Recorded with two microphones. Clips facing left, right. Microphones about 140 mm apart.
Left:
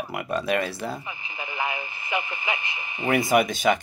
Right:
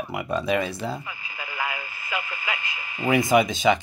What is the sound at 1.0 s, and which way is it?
Radio, 25° left (ahead or behind).